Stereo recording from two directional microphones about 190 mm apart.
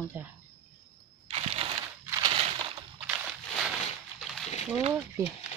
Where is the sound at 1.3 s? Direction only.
30° right (ahead or behind).